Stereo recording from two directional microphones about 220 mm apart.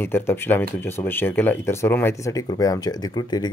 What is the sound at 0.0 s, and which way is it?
Speech, 10° left (ahead or behind).